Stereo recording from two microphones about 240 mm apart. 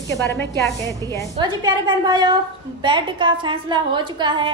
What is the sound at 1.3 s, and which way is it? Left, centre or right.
Speech, centre.